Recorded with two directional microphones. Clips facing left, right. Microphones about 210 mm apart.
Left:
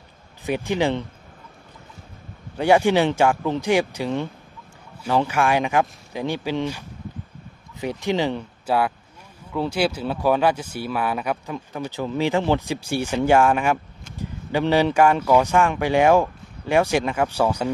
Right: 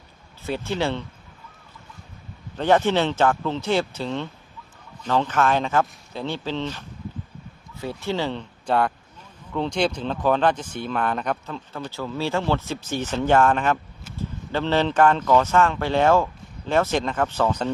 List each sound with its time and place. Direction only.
0.5 s speech: 15° left (ahead or behind)
2.5 s speech: 10° left (ahead or behind)